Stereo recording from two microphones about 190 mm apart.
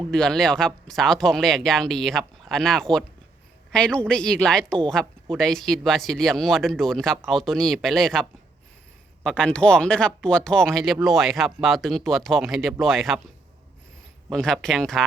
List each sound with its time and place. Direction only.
0.1 s a woman's voice: 5° left (ahead or behind)
14.3 s speech: 5° left (ahead or behind)